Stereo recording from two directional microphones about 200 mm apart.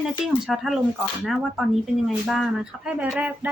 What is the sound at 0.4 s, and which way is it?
A woman's voice, centre (ahead or behind).